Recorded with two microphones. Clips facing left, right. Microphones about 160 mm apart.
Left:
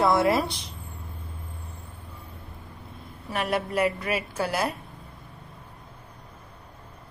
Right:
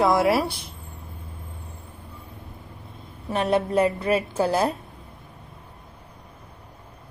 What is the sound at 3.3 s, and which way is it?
A woman's voice, 25° right (ahead or behind).